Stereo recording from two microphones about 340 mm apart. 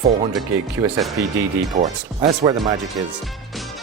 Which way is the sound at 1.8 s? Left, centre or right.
Centre.